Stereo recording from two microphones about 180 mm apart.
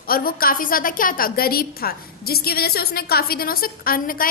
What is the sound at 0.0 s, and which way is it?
A woman's voice, 55° left (ahead or behind).